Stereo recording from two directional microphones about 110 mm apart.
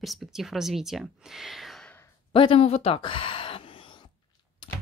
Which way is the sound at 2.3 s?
55° left (ahead or behind).